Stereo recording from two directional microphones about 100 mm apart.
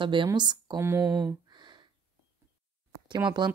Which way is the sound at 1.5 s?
50° right (ahead or behind).